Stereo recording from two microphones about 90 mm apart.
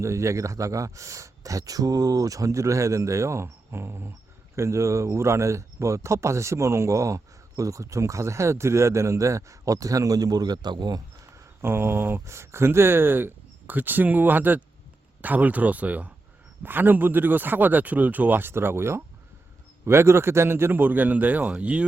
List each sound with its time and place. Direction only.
0.0 s speech: 35° right (ahead or behind); by 11.0 s 55° right (ahead or behind)
11.3 s speech: 25° right (ahead or behind)